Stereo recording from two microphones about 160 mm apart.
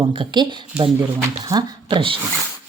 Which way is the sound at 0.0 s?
30° right (ahead or behind).